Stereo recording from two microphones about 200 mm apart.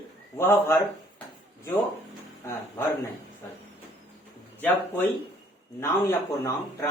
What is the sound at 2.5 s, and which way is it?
Speech, 15° left (ahead or behind).